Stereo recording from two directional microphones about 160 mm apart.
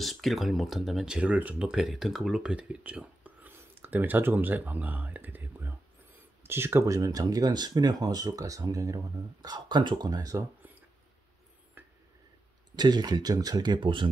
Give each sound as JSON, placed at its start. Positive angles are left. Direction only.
{"t": 0.0, "sound": "speech", "side_deg": 0}
{"t": 11.8, "sound": "a sound", "side_deg": -10}
{"t": 12.7, "sound": "speech", "side_deg": -25}